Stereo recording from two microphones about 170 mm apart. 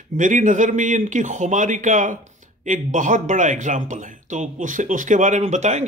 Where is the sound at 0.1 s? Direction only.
50° right (ahead or behind).